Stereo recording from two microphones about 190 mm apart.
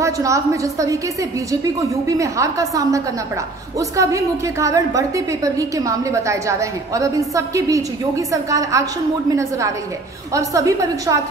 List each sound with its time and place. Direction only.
0.0 s a woman's voice: 15° right (ahead or behind)